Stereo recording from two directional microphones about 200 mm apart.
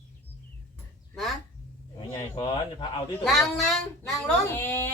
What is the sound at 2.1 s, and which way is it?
Speech, 25° left (ahead or behind).